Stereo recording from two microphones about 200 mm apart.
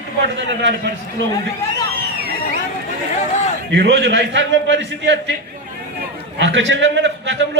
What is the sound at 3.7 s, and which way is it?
A man's voice, 60° right (ahead or behind).